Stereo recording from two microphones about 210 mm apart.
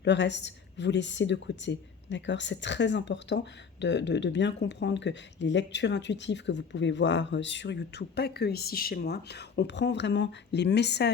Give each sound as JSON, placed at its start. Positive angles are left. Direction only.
{"t": 0.0, "sound": "a woman's voice", "side_deg": 55}